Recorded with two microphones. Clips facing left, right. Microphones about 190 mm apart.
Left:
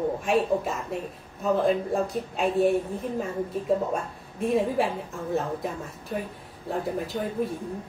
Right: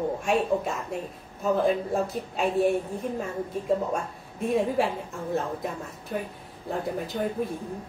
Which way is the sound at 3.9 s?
Centre (ahead or behind).